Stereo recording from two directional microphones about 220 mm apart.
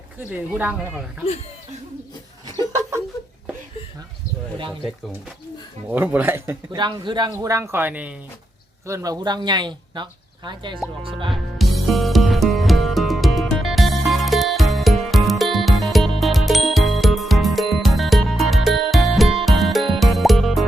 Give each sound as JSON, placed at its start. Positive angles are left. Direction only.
{"t": 0.2, "sound": "a man's voice", "side_deg": -5}
{"t": 5.9, "sound": "a man's voice", "side_deg": -10}
{"t": 11.3, "sound": "music", "side_deg": 0}